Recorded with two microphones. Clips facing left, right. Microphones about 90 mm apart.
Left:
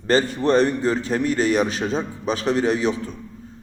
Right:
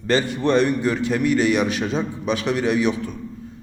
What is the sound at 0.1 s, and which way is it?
A man's voice, 35° left (ahead or behind).